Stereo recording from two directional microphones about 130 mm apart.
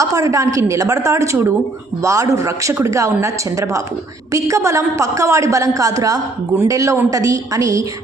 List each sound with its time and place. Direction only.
0.0 s a woman's voice: 25° right (ahead or behind)